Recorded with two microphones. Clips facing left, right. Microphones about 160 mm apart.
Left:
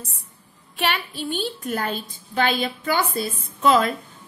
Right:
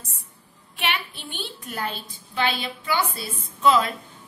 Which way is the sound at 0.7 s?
40° left (ahead or behind).